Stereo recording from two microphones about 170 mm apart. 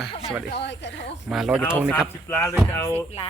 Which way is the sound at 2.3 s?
15° left (ahead or behind).